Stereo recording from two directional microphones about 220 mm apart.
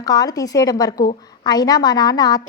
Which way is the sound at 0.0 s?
15° left (ahead or behind).